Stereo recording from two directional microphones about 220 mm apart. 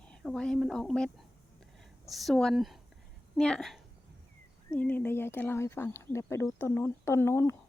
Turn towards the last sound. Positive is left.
turn(degrees=10)  # may be behind; listen again after turning